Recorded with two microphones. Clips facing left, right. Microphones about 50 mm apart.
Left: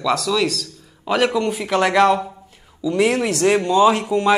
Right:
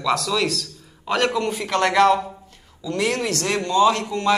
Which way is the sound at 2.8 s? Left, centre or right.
Centre.